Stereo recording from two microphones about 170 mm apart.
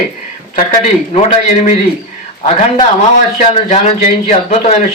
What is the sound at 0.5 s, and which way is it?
Speech, 45° left (ahead or behind).